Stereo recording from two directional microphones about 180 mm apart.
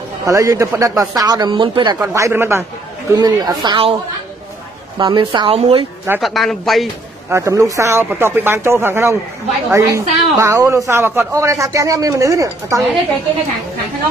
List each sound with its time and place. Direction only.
0.2 s speech: 20° right (ahead or behind)
2.0 s speech: 15° right (ahead or behind)
4.9 s speech: 25° right (ahead or behind)
6.2 s a man's voice: centre (ahead or behind)
7.2 s speech: 15° right (ahead or behind)